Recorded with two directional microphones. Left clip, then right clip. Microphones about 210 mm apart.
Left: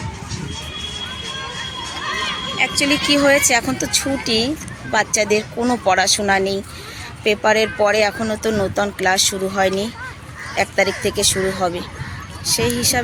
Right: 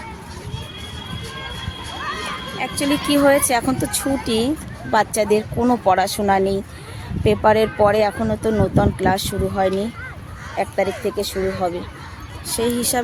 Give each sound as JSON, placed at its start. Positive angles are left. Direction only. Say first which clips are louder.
{"t": 2.6, "sound": "speech", "louder": "left 5 dB", "side_deg": -10}